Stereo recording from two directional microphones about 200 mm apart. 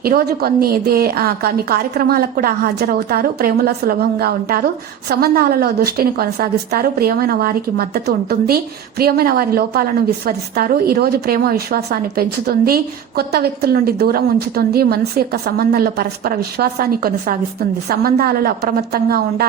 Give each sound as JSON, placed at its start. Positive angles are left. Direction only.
{"t": 0.0, "sound": "a woman's voice", "side_deg": -50}